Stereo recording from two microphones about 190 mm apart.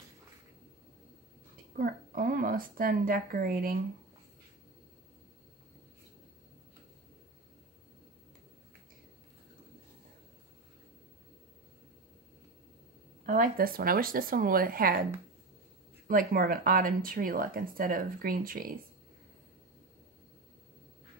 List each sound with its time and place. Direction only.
1.8 s speech: 50° right (ahead or behind)
13.2 s speech: 45° right (ahead or behind)
16.1 s speech: 50° right (ahead or behind)